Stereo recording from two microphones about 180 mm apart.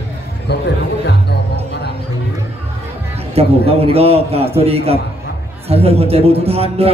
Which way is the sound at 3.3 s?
35° right (ahead or behind).